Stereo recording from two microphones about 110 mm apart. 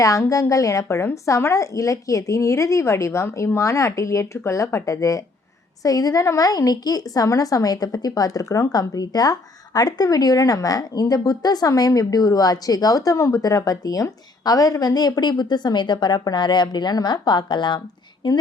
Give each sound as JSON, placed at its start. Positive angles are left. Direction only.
{"t": 0.0, "sound": "a woman's voice", "side_deg": 30}